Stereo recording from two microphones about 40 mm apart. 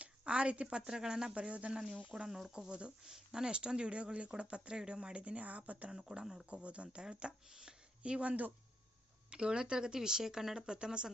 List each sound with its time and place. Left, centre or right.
0.0 s a sound: right
0.8 s speech: centre; by 2.1 s right
2.1 s speech: centre; by 5.9 s right
5.9 s speech: centre
6.5 s speech: right
9.3 s speech: right